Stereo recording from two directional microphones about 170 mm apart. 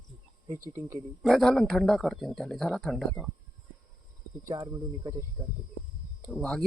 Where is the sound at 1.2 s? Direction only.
Centre (ahead or behind).